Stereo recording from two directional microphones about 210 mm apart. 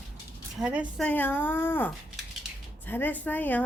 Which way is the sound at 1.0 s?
10° left (ahead or behind).